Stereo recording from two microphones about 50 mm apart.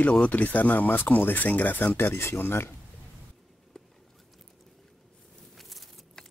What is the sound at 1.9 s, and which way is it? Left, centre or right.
Speech, left.